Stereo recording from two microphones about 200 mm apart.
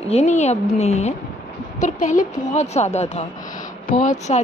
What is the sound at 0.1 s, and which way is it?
Speech, 35° left (ahead or behind).